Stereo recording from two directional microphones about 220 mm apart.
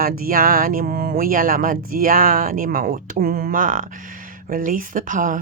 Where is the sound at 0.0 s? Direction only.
40° right (ahead or behind).